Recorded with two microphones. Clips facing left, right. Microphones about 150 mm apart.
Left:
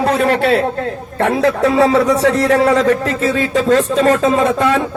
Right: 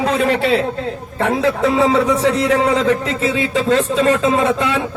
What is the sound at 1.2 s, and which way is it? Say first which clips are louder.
Speech: left 2 dB; 70° left (ahead or behind).